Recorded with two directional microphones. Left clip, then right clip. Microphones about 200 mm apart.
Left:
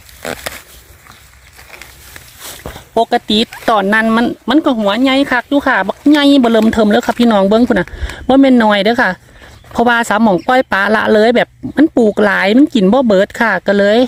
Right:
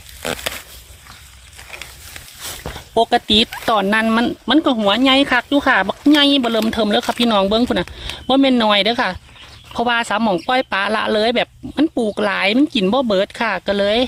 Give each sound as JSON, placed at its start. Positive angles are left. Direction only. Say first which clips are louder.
{"t": 3.0, "sound": "speech", "louder": "left 2 dB", "side_deg": 55}